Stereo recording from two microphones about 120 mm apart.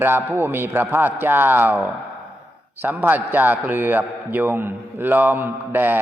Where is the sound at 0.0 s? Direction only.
20° right (ahead or behind).